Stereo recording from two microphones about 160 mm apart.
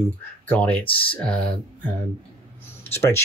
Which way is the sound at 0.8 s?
35° left (ahead or behind).